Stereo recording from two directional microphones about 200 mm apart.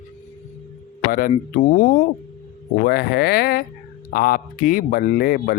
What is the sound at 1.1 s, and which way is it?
Speech, 45° left (ahead or behind).